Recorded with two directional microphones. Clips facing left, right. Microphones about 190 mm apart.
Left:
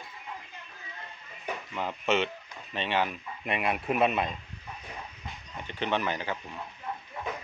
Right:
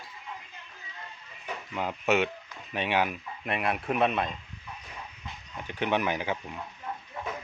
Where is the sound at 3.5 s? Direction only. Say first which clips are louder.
Even; centre (ahead or behind).